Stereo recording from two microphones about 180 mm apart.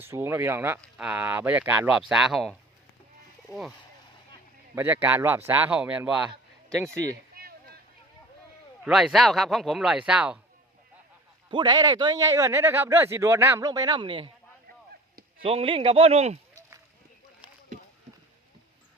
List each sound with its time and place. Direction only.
0.0 s speech: 10° right (ahead or behind)
4.7 s speech: 10° right (ahead or behind)
8.8 s speech: 5° right (ahead or behind)
11.5 s a man's voice: 25° right (ahead or behind)
15.4 s a man's voice: 30° right (ahead or behind)